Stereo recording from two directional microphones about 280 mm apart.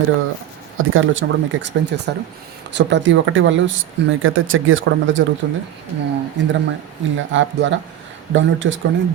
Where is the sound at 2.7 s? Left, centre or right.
Right.